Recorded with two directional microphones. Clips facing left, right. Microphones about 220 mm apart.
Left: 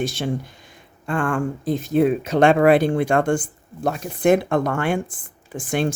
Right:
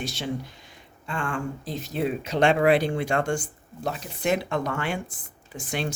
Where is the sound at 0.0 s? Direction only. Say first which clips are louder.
Left 6 dB; 50° left (ahead or behind).